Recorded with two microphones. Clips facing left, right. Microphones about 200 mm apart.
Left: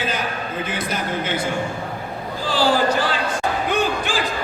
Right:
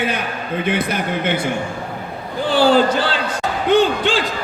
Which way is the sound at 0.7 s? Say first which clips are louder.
Right 7 dB; 60° right (ahead or behind).